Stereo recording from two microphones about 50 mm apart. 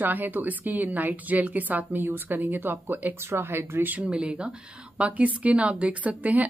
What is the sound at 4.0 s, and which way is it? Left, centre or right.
Speech, centre.